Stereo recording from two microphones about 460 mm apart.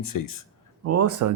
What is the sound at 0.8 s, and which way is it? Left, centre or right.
Speech, right.